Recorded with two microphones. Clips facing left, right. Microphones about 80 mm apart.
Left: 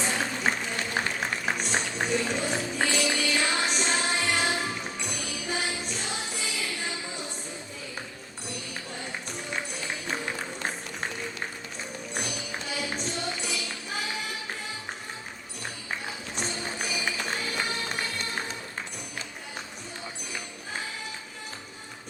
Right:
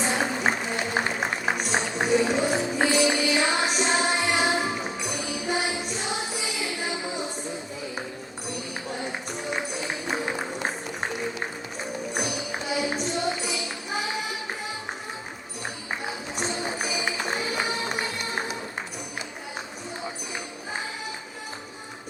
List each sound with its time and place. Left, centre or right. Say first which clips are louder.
0.0 s music: right 3 dB; centre
8.4 s music: right 5 dB; centre
16.0 s music: right 4 dB; centre